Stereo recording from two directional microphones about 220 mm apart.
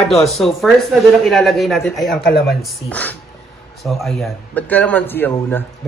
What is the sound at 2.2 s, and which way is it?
Speech, 45° left (ahead or behind).